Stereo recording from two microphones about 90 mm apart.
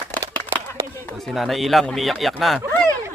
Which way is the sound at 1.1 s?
Centre (ahead or behind).